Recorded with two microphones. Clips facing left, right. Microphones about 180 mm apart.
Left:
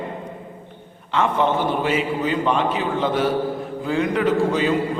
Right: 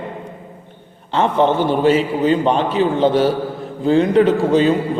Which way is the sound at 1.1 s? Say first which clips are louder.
Right 4 dB; 30° right (ahead or behind).